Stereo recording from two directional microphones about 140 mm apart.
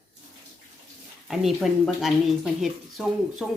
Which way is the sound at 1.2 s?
Centre (ahead or behind).